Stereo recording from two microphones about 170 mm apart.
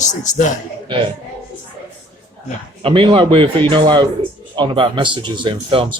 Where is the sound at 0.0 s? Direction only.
45° left (ahead or behind).